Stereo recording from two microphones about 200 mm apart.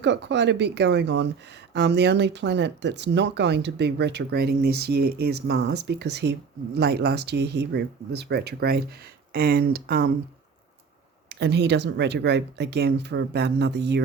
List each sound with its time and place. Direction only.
0.0 s speech: 60° right (ahead or behind)
11.3 s speech: 60° right (ahead or behind)